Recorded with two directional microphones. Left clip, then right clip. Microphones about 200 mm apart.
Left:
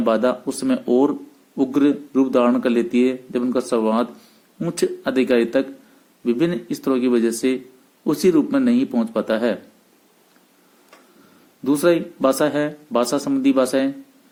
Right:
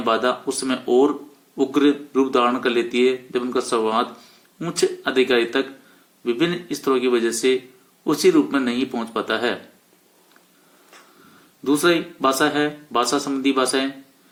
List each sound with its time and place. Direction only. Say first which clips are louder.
0.0 s speech: left 1 dB; 45° left (ahead or behind)
11.6 s speech: left 1 dB; 45° left (ahead or behind)